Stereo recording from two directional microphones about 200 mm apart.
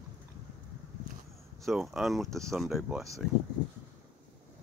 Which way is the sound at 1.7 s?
Centre (ahead or behind).